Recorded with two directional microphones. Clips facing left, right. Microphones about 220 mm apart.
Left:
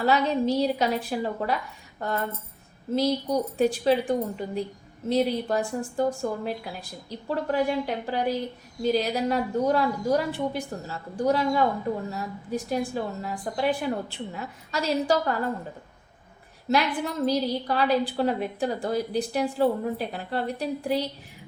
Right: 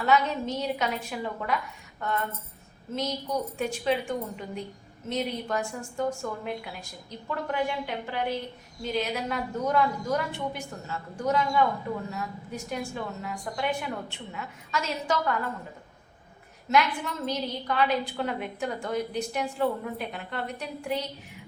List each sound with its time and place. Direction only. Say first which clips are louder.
0.0 s a woman's voice: left 3 dB; 35° left (ahead or behind)
16.6 s a woman's voice: left 1 dB; 35° left (ahead or behind)